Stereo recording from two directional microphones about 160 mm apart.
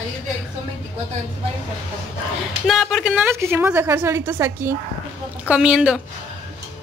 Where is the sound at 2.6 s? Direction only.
Centre (ahead or behind).